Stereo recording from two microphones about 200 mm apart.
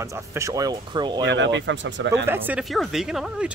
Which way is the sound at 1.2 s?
65° right (ahead or behind).